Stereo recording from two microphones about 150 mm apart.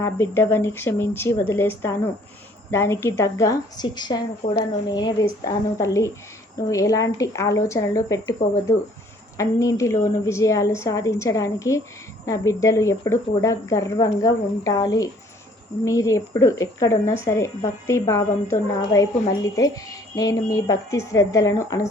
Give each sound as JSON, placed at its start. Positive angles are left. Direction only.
{"t": 0.0, "sound": "a woman's voice", "side_deg": 15}